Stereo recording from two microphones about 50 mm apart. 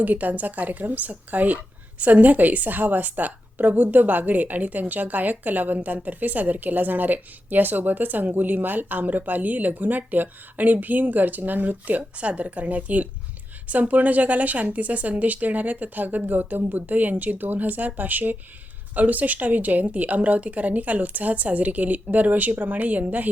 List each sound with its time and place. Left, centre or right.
0.0 s a woman's voice: right